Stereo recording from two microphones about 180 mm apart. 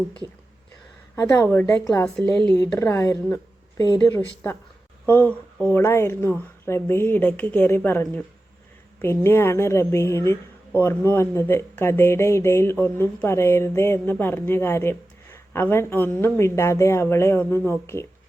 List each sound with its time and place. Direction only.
1.1 s a woman's voice: 15° left (ahead or behind)
2.6 s a woman's voice: 15° left (ahead or behind)